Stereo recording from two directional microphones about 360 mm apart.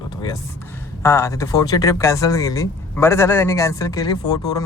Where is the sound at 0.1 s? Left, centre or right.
Centre.